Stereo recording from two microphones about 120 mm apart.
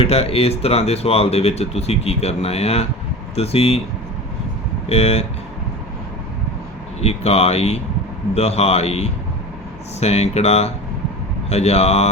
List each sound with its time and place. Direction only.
0.0 s speech: 55° left (ahead or behind)
4.9 s speech: 60° left (ahead or behind)
7.0 s speech: 60° left (ahead or behind)